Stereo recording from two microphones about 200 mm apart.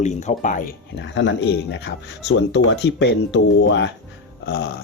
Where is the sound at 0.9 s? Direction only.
65° left (ahead or behind).